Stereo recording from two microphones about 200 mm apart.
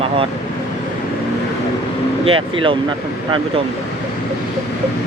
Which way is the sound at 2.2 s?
25° right (ahead or behind).